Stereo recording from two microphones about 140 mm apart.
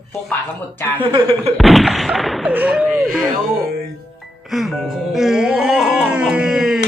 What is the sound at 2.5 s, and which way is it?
Speech, 10° right (ahead or behind).